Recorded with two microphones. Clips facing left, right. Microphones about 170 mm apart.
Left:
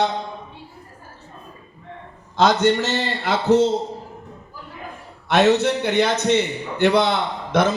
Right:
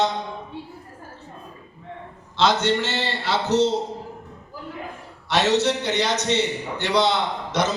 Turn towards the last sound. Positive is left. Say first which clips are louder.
# left 4 dB
turn(degrees=55)  # may be behind; listen again after turning